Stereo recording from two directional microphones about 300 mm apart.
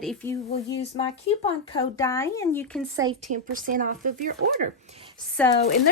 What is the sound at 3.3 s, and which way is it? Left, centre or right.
Speech, right.